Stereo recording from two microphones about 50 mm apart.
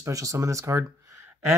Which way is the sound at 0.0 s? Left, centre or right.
Right.